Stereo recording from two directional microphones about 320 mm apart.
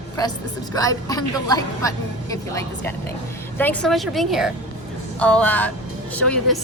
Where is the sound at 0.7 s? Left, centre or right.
Centre.